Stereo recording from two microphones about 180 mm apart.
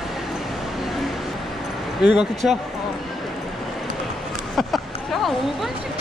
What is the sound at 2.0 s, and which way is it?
Speech, 5° right (ahead or behind).